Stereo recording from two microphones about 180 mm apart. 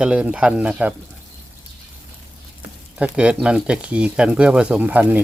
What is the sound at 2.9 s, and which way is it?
Speech, 5° right (ahead or behind).